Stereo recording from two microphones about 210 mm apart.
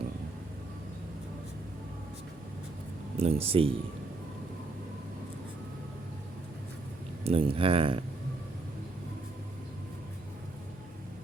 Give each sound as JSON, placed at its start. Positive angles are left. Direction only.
{"t": 3.2, "sound": "speech", "side_deg": -30}
{"t": 7.3, "sound": "speech", "side_deg": -25}